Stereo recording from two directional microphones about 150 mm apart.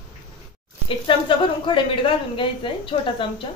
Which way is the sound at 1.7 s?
35° left (ahead or behind).